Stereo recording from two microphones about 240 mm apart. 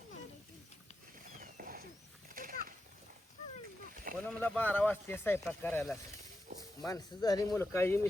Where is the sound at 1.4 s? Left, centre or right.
Right.